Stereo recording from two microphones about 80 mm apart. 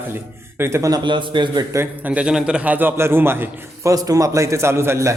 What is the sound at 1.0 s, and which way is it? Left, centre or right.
Speech, right.